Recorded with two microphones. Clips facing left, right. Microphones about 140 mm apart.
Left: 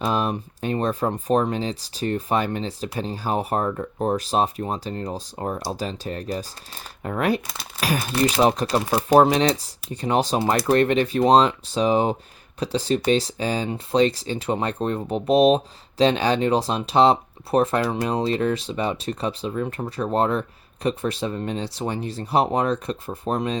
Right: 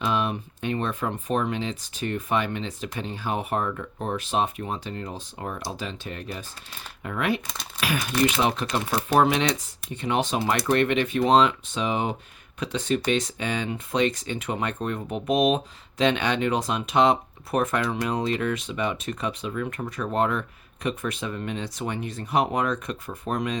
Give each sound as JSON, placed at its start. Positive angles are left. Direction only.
{"t": 0.0, "sound": "speech", "side_deg": 40}
{"t": 7.4, "sound": "speech", "side_deg": 0}
{"t": 7.8, "sound": "speech", "side_deg": 40}